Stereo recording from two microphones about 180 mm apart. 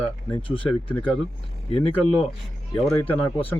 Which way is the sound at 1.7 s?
35° left (ahead or behind).